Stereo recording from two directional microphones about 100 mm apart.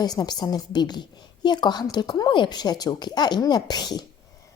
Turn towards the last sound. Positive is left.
turn(degrees=45)  # may be behind; listen again after turning